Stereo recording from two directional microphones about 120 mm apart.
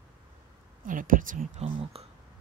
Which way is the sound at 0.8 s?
90° right.